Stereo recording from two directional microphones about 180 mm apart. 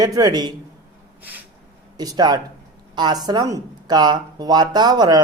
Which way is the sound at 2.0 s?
20° right (ahead or behind).